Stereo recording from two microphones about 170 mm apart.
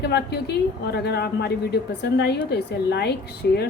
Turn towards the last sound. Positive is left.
turn(degrees=70)  # may be behind; listen again after turning